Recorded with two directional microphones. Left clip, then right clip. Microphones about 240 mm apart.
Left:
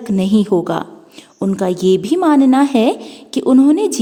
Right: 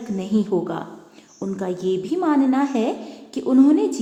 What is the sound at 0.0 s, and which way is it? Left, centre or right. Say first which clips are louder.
A woman's voice: left 8 dB; left.